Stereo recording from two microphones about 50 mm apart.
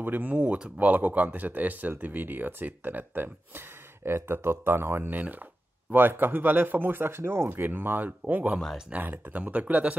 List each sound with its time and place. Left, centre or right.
0.0 s speech: right
4.1 s speech: right
9.4 s speech: right